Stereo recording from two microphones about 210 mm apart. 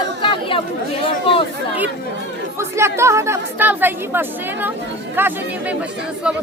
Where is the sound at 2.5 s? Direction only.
15° right (ahead or behind).